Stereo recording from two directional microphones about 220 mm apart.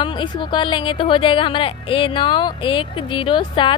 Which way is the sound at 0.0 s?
20° left (ahead or behind).